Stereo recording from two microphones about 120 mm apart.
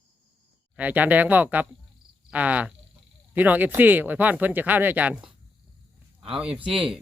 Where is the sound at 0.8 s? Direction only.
15° right (ahead or behind).